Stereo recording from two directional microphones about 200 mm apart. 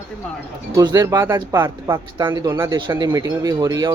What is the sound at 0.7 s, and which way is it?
Speech, 15° right (ahead or behind).